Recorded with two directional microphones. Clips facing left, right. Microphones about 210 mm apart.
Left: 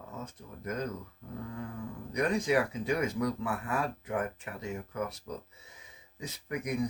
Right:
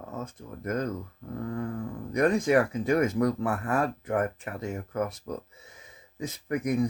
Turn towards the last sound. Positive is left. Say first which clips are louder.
# right 7 dB
turn(degrees=-45)  # may be behind; listen again after turning